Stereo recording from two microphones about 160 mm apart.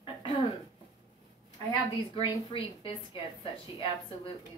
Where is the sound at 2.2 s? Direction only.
35° left (ahead or behind).